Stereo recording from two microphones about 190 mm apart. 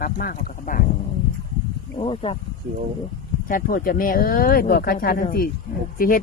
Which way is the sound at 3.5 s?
50° left (ahead or behind).